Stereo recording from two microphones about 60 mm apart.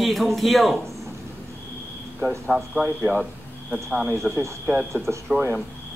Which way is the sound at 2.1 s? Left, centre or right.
Centre.